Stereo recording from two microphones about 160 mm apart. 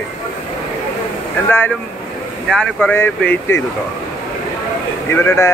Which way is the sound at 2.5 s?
10° left (ahead or behind).